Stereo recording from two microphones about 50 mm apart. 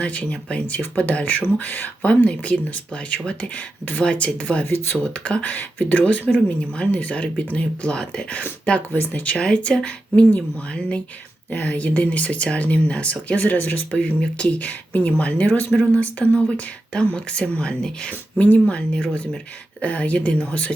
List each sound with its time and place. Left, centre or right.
0.0 s speech: left
2.0 s speech: left
4.6 s speech: left
5.1 s speech: left
13.9 s speech: left
18.1 s speech: left